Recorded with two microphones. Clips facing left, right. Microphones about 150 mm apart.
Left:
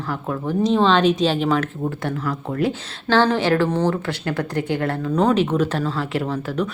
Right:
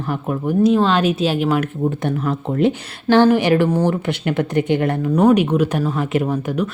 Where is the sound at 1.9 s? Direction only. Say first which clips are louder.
Right 4 dB; 20° right (ahead or behind).